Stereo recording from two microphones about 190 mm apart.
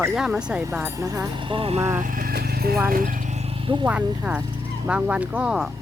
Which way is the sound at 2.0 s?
45° right (ahead or behind).